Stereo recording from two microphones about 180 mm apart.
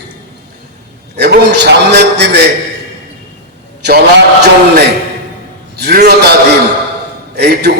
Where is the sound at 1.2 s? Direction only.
70° right (ahead or behind).